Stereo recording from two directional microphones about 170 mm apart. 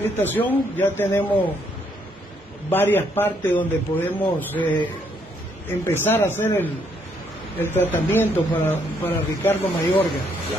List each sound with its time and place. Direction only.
0.0 s speech: 10° left (ahead or behind)
2.7 s speech: 10° left (ahead or behind)
5.7 s speech: 15° left (ahead or behind)